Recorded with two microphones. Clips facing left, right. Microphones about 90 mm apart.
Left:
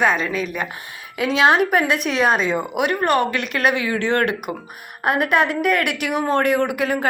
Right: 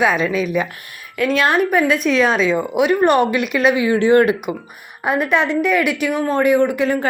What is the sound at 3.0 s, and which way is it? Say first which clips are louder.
Speech: right 4 dB; 15° right (ahead or behind).